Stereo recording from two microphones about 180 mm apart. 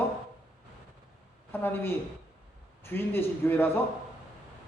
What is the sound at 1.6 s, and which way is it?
Speech, 10° left (ahead or behind).